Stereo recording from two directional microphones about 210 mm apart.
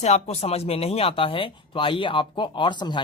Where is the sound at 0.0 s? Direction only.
30° left (ahead or behind).